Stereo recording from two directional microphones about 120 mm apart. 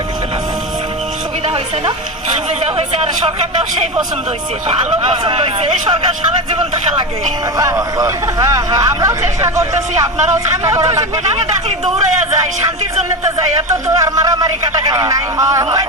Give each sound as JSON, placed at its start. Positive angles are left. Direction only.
{"t": 4.7, "sound": "speech", "side_deg": -50}
{"t": 7.5, "sound": "speech", "side_deg": -30}
{"t": 13.8, "sound": "speech", "side_deg": -30}